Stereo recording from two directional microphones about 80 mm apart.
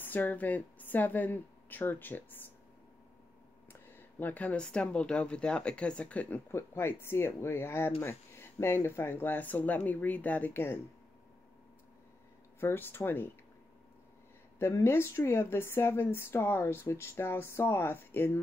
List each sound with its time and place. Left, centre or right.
0.0 s speech: left
3.9 s speech: left
6.5 s speech: left
12.5 s speech: left
14.6 s speech: left